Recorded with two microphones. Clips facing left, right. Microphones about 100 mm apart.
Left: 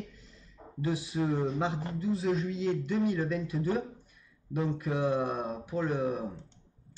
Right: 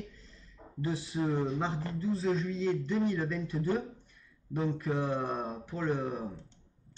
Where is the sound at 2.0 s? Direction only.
35° right (ahead or behind).